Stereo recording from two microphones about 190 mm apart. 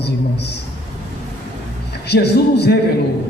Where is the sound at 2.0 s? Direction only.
60° left (ahead or behind).